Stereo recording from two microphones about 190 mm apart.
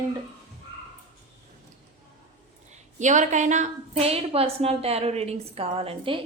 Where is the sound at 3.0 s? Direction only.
40° right (ahead or behind).